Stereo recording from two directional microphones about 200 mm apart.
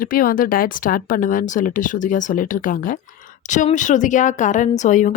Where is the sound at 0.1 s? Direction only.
45° left (ahead or behind).